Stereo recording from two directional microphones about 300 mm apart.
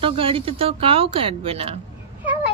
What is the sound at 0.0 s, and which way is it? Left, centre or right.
Speech, centre.